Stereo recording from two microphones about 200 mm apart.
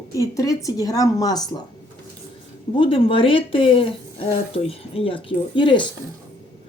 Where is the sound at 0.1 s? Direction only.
15° left (ahead or behind).